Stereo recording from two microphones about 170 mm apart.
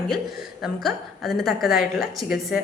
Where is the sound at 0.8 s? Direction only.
Centre (ahead or behind).